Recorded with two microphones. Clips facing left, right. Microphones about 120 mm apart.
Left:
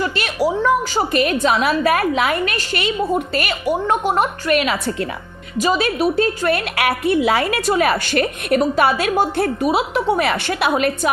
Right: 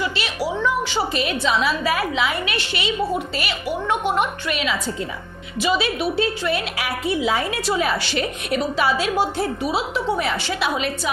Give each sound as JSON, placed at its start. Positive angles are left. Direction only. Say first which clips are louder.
{"t": 0.0, "sound": "a woman's voice", "louder": "left 5 dB", "side_deg": 50}
{"t": 4.5, "sound": "a woman's voice", "louder": "left 8 dB", "side_deg": 55}
{"t": 5.5, "sound": "a woman's voice", "louder": "left 4 dB", "side_deg": 45}